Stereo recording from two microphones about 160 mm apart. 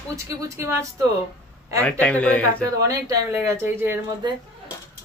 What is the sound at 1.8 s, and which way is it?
Speech, 10° left (ahead or behind).